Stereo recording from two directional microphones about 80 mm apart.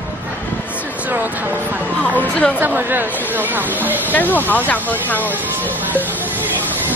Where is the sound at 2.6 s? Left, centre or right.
Right.